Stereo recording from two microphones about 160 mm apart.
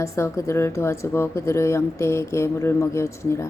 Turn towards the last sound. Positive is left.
turn(degrees=15)  # may be behind; listen again after turning